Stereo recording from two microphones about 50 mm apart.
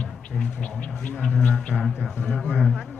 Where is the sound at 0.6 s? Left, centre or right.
Left.